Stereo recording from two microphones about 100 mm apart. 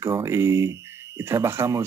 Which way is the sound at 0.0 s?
25° right (ahead or behind).